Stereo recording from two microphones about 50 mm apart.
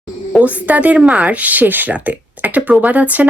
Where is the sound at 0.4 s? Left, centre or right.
Right.